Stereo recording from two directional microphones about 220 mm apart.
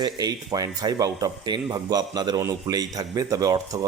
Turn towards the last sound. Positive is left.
turn(degrees=-15)  # may be behind; listen again after turning